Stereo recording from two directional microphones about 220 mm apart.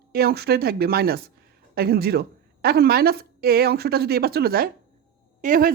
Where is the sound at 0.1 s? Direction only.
45° right (ahead or behind).